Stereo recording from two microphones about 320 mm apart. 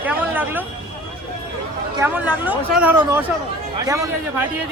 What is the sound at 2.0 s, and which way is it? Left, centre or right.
A man's voice, centre.